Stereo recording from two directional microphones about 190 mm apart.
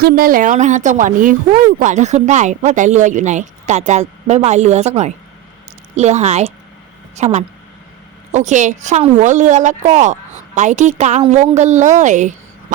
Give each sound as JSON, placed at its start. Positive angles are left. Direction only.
{"t": 0.0, "sound": "speech", "side_deg": -50}